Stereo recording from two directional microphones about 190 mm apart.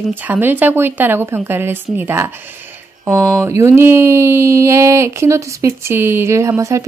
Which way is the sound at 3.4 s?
15° right (ahead or behind).